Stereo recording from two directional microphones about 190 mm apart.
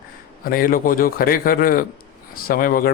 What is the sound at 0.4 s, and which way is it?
Speech, 50° left (ahead or behind).